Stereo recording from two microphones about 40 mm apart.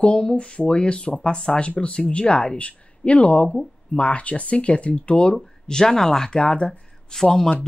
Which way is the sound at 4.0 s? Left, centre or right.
Left.